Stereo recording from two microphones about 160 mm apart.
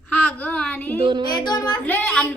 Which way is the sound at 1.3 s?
25° left (ahead or behind).